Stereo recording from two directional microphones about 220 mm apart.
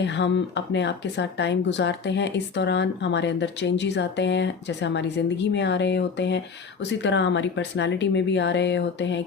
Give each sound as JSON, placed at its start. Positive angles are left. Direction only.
{"t": 0.0, "sound": "speech", "side_deg": 55}